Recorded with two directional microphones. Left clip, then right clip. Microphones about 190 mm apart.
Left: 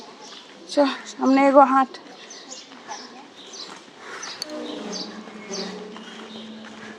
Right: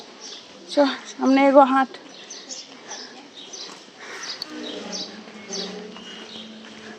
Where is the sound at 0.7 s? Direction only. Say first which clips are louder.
Right 1 dB; 5° right (ahead or behind).